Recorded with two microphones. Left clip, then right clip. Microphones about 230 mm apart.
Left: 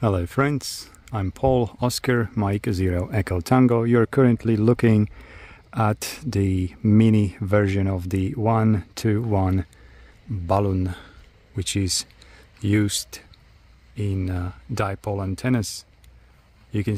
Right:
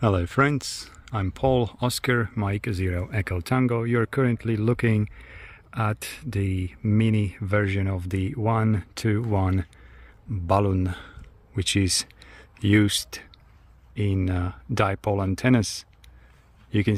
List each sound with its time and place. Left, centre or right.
0.0 s speech: centre